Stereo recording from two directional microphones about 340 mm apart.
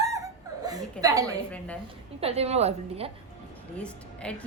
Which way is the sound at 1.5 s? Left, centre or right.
Centre.